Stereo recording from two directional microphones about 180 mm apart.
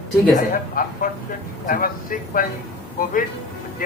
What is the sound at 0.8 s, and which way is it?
A man's voice, 50° left (ahead or behind).